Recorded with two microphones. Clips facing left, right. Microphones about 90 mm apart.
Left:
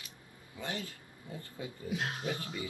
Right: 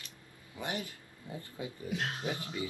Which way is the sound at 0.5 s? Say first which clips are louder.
Right 2 dB; 20° right (ahead or behind).